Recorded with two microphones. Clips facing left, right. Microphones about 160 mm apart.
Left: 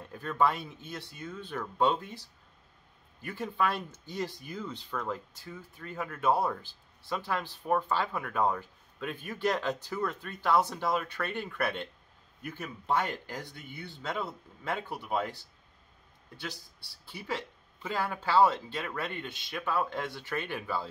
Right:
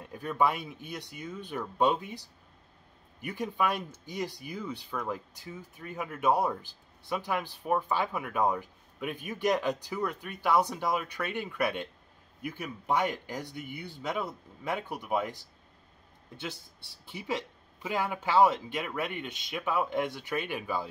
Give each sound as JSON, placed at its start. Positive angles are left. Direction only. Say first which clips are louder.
{"t": 0.0, "sound": "speech", "louder": "even", "side_deg": -15}
{"t": 17.0, "sound": "speech", "louder": "right 2 dB", "side_deg": -20}